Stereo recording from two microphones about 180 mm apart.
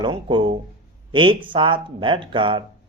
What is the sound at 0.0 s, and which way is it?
Speech, 25° right (ahead or behind).